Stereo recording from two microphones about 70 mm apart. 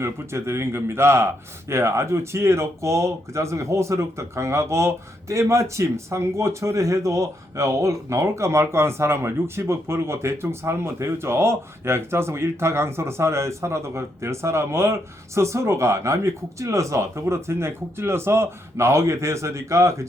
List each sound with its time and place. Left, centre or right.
0.0 s speech: right